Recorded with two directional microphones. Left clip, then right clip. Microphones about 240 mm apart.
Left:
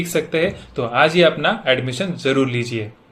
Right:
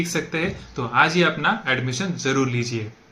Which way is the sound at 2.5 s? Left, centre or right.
Right.